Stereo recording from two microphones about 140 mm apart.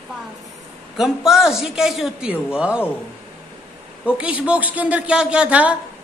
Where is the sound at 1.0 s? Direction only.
5° right (ahead or behind).